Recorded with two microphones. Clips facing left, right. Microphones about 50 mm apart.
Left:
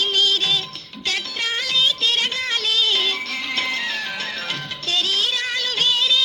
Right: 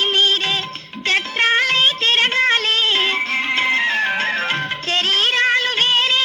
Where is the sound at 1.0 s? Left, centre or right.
Right.